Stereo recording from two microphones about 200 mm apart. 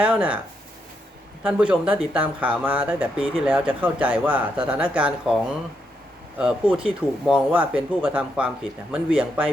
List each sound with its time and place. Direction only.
0.0 s speech: 5° right (ahead or behind)
1.5 s speech: 5° right (ahead or behind)
6.4 s speech: 5° right (ahead or behind)